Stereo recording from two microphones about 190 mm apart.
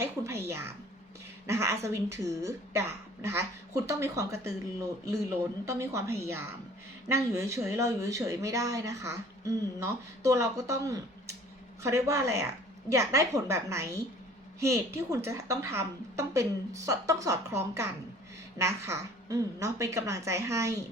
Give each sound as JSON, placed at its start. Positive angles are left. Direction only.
{"t": 0.0, "sound": "speech", "side_deg": -15}